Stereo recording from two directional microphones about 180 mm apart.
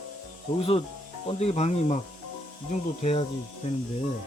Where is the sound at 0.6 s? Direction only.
30° left (ahead or behind).